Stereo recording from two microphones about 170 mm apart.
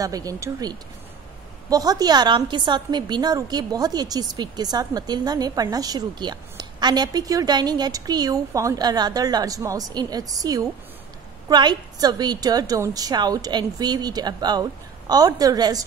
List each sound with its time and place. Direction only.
0.0 s a woman's voice: 20° right (ahead or behind)